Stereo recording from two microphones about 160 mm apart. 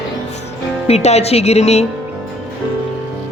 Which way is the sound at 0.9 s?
40° left (ahead or behind).